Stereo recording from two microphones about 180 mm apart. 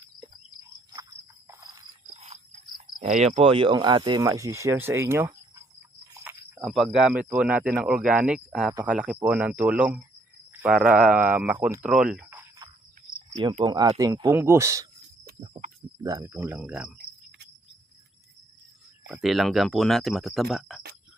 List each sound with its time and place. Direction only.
2.1 s cricket: 40° right (ahead or behind)
2.7 s cricket: 30° right (ahead or behind)
3.1 s speech: 35° right (ahead or behind); by 5.6 s 15° right (ahead or behind)
6.3 s a sound: 10° right (ahead or behind)
6.6 s speech: centre (ahead or behind)
13.3 s speech: 25° right (ahead or behind)
16.0 s speech: 15° right (ahead or behind)
19.0 s speech: centre (ahead or behind)